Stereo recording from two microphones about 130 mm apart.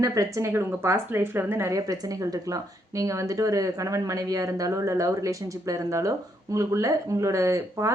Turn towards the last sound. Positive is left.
turn(degrees=-20)  # may be behind; listen again after turning